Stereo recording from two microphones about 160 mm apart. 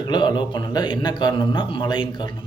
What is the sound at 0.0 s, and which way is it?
Speech, 25° left (ahead or behind).